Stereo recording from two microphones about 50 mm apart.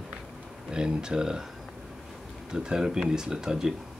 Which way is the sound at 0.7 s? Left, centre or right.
Centre.